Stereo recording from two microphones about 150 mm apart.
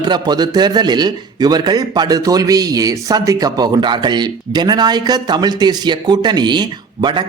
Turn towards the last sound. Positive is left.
turn(degrees=-30)  # may be behind; listen again after turning